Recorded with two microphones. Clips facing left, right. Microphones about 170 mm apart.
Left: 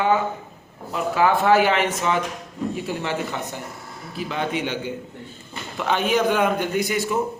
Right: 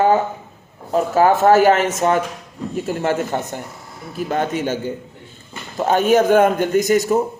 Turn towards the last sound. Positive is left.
turn(degrees=-40)  # may be behind; listen again after turning